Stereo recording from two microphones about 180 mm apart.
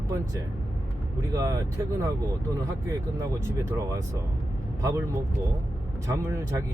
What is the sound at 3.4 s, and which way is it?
Speech, 15° right (ahead or behind).